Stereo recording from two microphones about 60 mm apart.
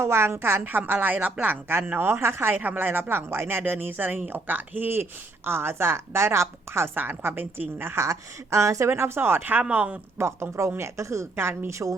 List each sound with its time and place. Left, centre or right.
0.0 s a woman's voice: right
3.6 s a woman's voice: right
8.0 s speech: right
8.9 s a woman's voice: right
9.7 s speech: centre
10.2 s a woman's voice: right